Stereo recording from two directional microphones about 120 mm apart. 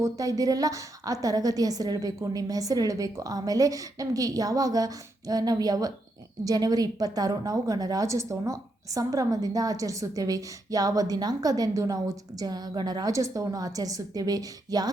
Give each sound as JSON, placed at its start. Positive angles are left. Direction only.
{"t": 0.0, "sound": "a woman's voice", "side_deg": -30}